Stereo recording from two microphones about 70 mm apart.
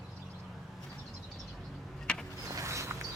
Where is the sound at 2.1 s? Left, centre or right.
Centre.